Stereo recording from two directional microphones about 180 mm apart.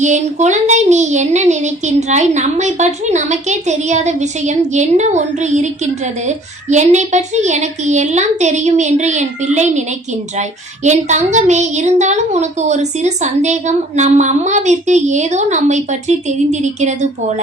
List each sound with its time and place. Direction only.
0.0 s a woman's voice: 40° right (ahead or behind)
10.8 s a woman's voice: 40° right (ahead or behind)